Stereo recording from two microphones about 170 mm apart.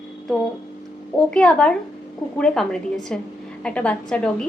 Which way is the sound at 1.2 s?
5° left (ahead or behind).